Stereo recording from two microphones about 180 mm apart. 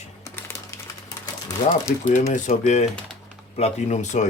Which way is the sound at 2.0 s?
40° left (ahead or behind).